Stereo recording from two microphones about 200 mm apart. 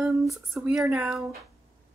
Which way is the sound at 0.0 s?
Centre (ahead or behind).